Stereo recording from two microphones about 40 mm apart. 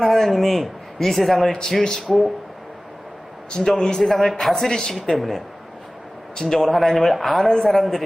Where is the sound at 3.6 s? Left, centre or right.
Centre.